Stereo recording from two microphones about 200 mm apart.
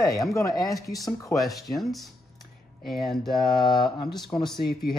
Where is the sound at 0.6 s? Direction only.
15° left (ahead or behind).